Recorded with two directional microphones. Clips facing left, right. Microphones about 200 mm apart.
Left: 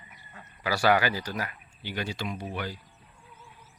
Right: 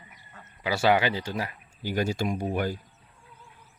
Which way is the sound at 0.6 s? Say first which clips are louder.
Right 1 dB; 20° right (ahead or behind).